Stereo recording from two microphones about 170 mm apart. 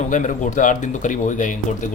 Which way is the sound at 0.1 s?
50° left (ahead or behind).